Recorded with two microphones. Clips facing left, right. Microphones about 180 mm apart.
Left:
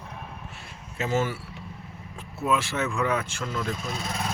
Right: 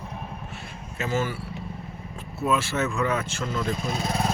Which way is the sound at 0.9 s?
25° left (ahead or behind).